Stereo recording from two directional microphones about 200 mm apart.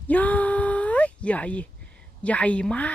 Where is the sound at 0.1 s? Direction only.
5° left (ahead or behind).